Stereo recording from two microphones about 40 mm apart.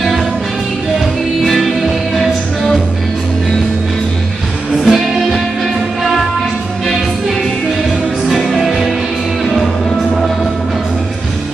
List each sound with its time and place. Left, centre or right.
1.4 s music: centre
4.8 s music: centre
8.3 s music: centre